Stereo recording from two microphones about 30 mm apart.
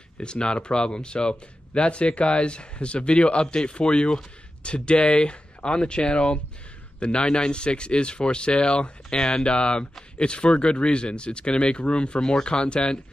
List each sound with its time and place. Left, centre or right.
0.2 s speech: left
12.2 s speech: centre
12.4 s speech: left